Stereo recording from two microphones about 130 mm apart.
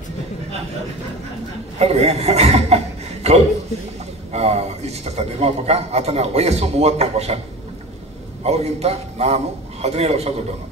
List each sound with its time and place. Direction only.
1.8 s a man's voice: 55° right (ahead or behind)
4.3 s a man's voice: 55° right (ahead or behind)
8.5 s a man's voice: 55° right (ahead or behind)